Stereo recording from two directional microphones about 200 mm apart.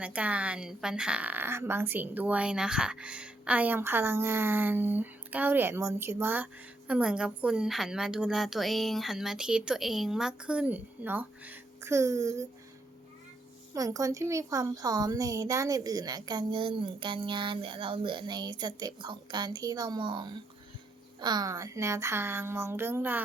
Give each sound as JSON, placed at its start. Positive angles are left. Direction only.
{"t": 0.0, "sound": "a woman's voice", "side_deg": -5}
{"t": 13.7, "sound": "a woman's voice", "side_deg": -15}